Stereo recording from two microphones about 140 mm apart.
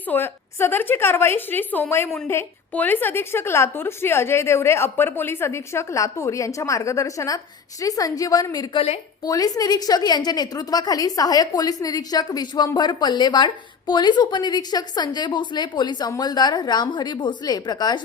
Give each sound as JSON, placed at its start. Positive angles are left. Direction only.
{"t": 0.1, "sound": "a woman's voice", "side_deg": 15}